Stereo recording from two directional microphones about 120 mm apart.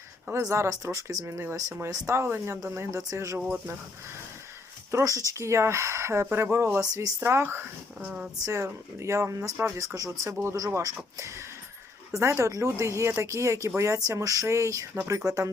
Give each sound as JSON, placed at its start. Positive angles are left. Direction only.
{"t": 0.3, "sound": "speech", "side_deg": -25}
{"t": 4.9, "sound": "speech", "side_deg": -25}
{"t": 8.4, "sound": "speech", "side_deg": -25}